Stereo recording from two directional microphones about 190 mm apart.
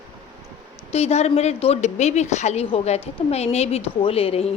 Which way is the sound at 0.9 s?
35° left (ahead or behind).